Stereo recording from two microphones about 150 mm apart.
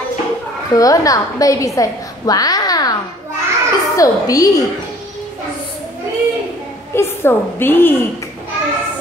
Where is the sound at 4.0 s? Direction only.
25° left (ahead or behind).